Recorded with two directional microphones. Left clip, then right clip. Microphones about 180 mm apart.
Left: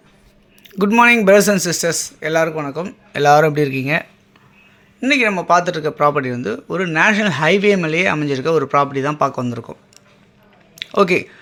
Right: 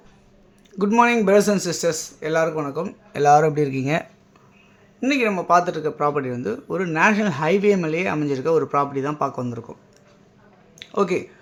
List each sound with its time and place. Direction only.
0.8 s speech: 15° left (ahead or behind); by 3.8 s centre (ahead or behind)
4.9 s speech: 5° left (ahead or behind)
10.8 s speech: 25° left (ahead or behind)